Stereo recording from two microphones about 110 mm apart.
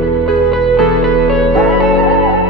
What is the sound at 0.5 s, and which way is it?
Music, centre (ahead or behind).